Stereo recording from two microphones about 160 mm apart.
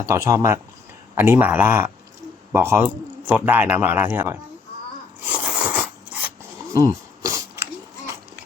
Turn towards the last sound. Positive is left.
turn(degrees=-20)  # may be behind; listen again after turning